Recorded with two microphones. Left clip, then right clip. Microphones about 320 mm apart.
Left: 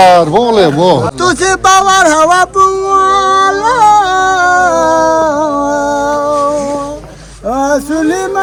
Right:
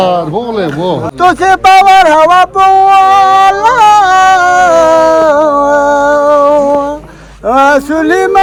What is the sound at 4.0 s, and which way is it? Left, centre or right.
Music, right.